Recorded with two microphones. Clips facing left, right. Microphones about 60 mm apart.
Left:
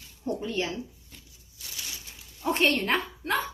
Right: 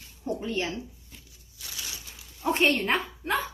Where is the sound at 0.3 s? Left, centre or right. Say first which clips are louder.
Even; right.